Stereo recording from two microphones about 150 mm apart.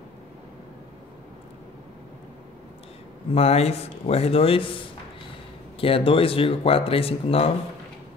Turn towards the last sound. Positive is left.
turn(degrees=40)  # may be behind; listen again after turning